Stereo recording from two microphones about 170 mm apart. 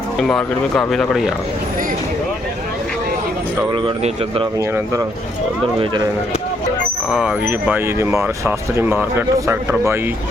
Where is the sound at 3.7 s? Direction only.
30° right (ahead or behind).